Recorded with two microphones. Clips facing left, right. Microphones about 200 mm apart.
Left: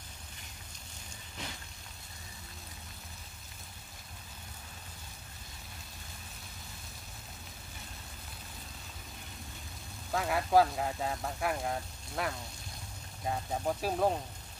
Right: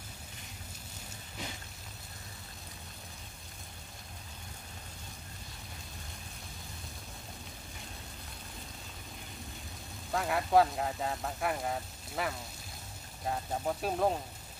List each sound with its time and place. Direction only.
10.1 s speech: centre (ahead or behind)